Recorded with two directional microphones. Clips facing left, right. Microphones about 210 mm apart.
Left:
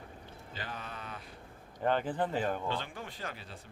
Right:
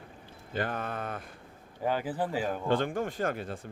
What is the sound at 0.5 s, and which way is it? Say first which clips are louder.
Speech: right 11 dB; 55° right (ahead or behind).